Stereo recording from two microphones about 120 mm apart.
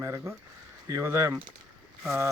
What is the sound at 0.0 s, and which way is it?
Speech, 25° right (ahead or behind).